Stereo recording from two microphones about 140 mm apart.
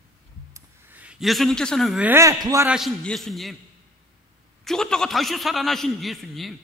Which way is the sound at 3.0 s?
Centre (ahead or behind).